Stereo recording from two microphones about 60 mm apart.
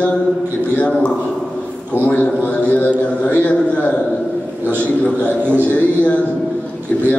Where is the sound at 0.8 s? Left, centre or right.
Centre.